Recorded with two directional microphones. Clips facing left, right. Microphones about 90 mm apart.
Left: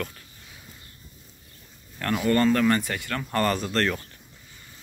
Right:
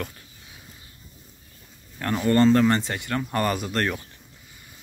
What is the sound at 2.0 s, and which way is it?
Speech, 25° right (ahead or behind).